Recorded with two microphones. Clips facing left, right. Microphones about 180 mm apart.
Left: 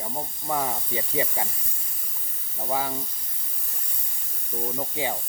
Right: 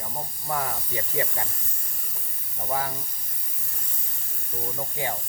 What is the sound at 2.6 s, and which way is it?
Speech, 15° left (ahead or behind).